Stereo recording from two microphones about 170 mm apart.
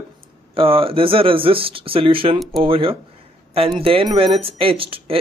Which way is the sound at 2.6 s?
30° right (ahead or behind).